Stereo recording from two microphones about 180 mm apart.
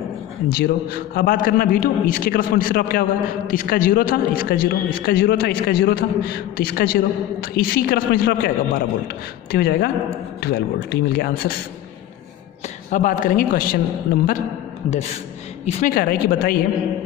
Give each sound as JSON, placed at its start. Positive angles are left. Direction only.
{"t": 0.6, "sound": "a man's voice", "side_deg": 55}
{"t": 12.9, "sound": "a man's voice", "side_deg": 45}
{"t": 15.6, "sound": "a man's voice", "side_deg": 50}